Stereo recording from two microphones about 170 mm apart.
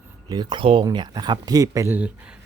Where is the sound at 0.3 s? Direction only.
25° right (ahead or behind).